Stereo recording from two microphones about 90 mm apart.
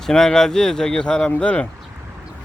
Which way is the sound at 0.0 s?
5° left (ahead or behind).